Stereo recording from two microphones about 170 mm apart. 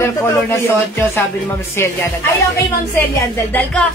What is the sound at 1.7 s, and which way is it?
Speech, 15° left (ahead or behind).